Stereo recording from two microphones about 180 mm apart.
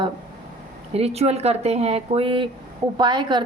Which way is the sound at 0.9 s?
35° right (ahead or behind).